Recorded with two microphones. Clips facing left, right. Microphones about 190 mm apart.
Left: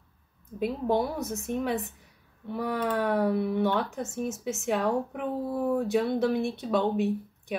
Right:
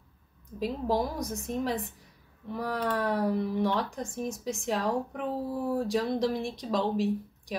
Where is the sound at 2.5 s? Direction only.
5° left (ahead or behind).